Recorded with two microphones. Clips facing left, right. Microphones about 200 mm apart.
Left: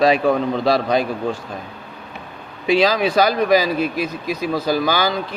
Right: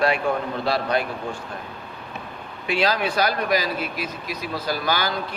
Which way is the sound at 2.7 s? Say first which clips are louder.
Left 6 dB; 90° left.